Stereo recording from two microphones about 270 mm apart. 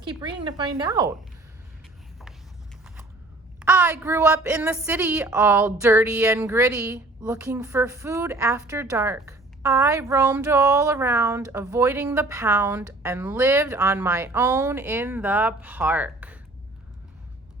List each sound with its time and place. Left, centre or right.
0.0 s a woman's voice: centre
3.6 s a woman's voice: centre